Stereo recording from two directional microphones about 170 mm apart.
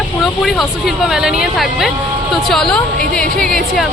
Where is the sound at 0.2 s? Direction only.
Centre (ahead or behind).